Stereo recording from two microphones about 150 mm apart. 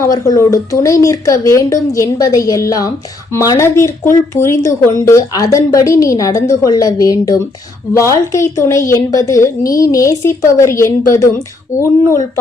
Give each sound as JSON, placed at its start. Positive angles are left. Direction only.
{"t": 0.0, "sound": "speech", "side_deg": 20}